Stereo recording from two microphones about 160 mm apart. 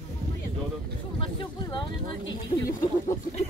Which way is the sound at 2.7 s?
50° left (ahead or behind).